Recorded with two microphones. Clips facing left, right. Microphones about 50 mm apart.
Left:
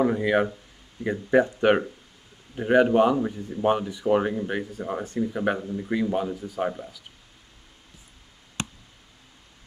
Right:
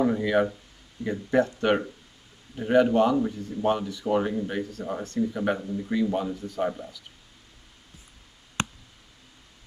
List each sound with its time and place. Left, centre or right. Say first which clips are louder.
0.0 s speech: left 1 dB; centre